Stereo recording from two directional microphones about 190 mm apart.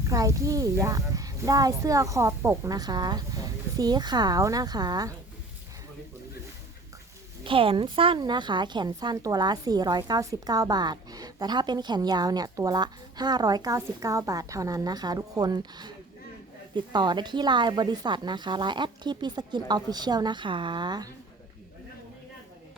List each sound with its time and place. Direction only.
0.1 s a child's voice: 15° right (ahead or behind)
7.4 s a woman's voice: 30° right (ahead or behind)